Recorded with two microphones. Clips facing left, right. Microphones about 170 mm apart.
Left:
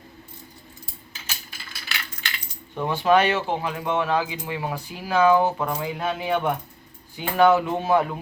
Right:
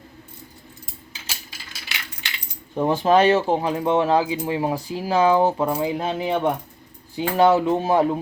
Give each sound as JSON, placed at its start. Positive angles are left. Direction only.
{"t": 2.7, "sound": "speech", "side_deg": -35}